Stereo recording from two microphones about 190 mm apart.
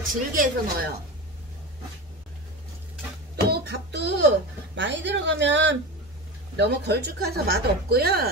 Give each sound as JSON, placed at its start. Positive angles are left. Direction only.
{"t": 0.3, "sound": "speech", "side_deg": -45}
{"t": 3.4, "sound": "a sound", "side_deg": -60}
{"t": 4.7, "sound": "a woman's voice", "side_deg": -70}
{"t": 6.5, "sound": "speech", "side_deg": -60}